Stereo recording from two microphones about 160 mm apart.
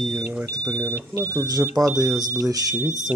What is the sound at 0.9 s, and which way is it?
Speech, 20° right (ahead or behind).